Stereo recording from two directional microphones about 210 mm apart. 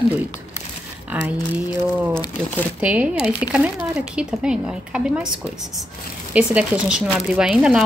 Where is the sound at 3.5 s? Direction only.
5° right (ahead or behind).